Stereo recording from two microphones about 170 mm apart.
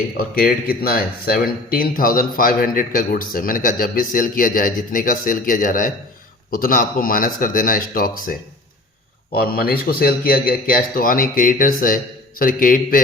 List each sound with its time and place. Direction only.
0.2 s speech: 60° left (ahead or behind)
9.4 s speech: 60° left (ahead or behind)